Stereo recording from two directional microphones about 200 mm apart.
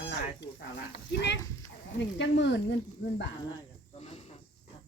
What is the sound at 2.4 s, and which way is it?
Speech, 65° left (ahead or behind).